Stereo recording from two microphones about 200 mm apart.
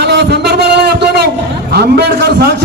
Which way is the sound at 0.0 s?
55° right (ahead or behind).